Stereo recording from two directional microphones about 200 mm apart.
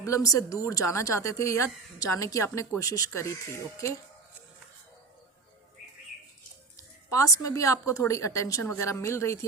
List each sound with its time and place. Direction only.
0.0 s speech: 15° left (ahead or behind)
6.7 s speech: 15° left (ahead or behind)